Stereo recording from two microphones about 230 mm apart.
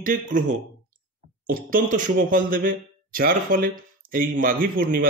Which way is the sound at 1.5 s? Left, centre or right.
Right.